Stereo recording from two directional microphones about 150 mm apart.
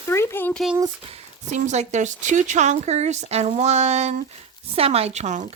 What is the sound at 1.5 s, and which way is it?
A woman's voice, 50° right (ahead or behind).